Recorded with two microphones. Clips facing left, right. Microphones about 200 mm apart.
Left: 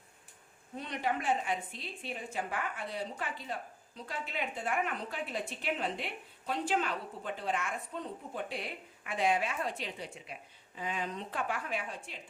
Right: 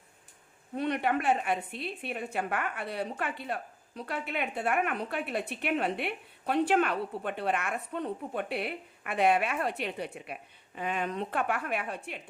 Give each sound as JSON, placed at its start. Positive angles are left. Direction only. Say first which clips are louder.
{"t": 0.8, "sound": "a woman's voice", "louder": "right 6 dB", "side_deg": -65}